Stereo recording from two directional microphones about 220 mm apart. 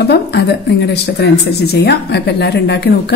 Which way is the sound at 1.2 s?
45° left (ahead or behind).